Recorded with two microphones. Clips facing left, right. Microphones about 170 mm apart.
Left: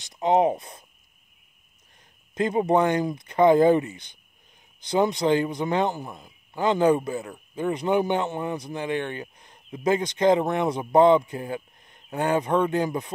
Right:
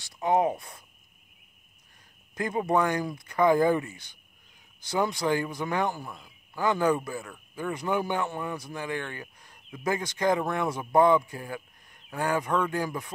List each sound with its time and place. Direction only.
0.0 s speech: 20° left (ahead or behind)
2.3 s a man's voice: 20° left (ahead or behind)